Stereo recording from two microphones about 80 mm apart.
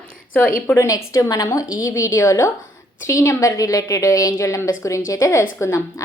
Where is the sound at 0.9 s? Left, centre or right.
Left.